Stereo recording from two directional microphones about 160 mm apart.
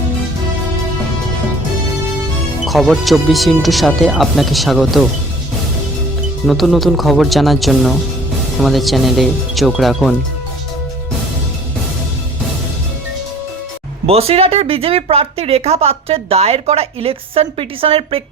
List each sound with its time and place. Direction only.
2.6 s speech: centre (ahead or behind)
6.5 s speech: centre (ahead or behind)
14.1 s speech: 40° right (ahead or behind)